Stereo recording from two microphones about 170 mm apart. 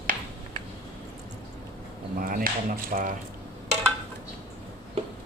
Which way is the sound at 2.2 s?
60° right (ahead or behind).